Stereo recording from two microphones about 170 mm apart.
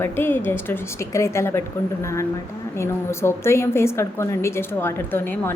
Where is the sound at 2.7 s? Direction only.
15° left (ahead or behind).